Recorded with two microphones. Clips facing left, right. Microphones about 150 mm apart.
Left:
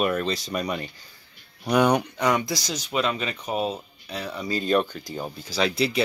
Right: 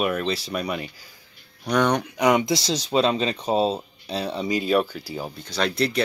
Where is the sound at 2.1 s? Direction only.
20° right (ahead or behind).